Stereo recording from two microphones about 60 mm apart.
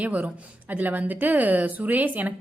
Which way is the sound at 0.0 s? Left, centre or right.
Right.